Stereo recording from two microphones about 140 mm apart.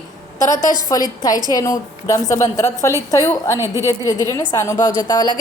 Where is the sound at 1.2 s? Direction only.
25° left (ahead or behind).